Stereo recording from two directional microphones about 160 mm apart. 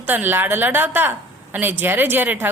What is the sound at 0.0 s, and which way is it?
A woman's voice, 10° right (ahead or behind).